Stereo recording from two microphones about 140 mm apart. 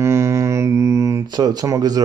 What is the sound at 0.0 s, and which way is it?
Speech, 20° right (ahead or behind).